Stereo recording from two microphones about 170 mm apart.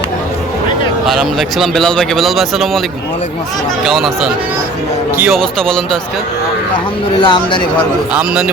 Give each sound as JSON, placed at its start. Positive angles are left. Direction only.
{"t": 1.0, "sound": "a man's voice", "side_deg": 0}
{"t": 3.8, "sound": "a man's voice", "side_deg": 0}
{"t": 5.3, "sound": "a man's voice", "side_deg": 5}
{"t": 7.2, "sound": "speech", "side_deg": 30}
{"t": 8.1, "sound": "a man's voice", "side_deg": -5}